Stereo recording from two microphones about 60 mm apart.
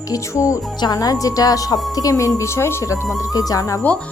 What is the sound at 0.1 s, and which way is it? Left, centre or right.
Speech, left.